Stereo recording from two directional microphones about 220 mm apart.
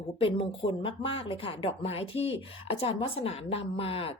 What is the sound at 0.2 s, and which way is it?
Speech, 25° left (ahead or behind).